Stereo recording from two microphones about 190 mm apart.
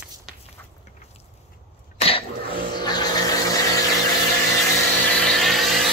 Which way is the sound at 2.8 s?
20° left (ahead or behind).